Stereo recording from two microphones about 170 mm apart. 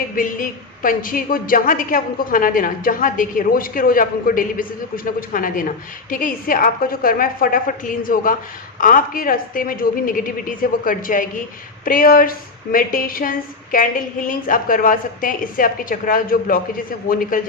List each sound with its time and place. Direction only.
0.2 s a woman's voice: 55° left (ahead or behind)